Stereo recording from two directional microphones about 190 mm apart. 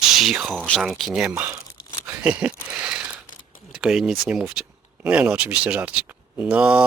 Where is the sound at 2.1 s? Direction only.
5° right (ahead or behind).